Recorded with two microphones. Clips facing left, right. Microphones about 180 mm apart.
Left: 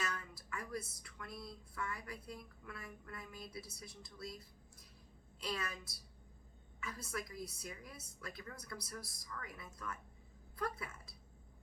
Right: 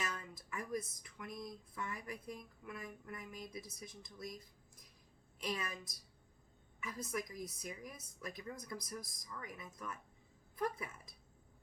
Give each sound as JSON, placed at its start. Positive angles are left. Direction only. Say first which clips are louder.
{"t": 0.0, "sound": "speech", "louder": "even", "side_deg": -20}
{"t": 5.4, "sound": "a woman's voice", "louder": "right 1 dB", "side_deg": -20}